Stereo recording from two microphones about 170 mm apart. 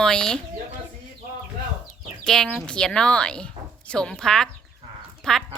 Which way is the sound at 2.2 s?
5° left (ahead or behind).